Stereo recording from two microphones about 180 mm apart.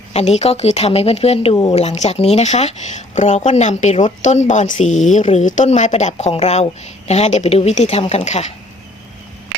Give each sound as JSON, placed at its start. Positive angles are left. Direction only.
{"t": 0.1, "sound": "speech", "side_deg": 35}
{"t": 1.7, "sound": "speech", "side_deg": 35}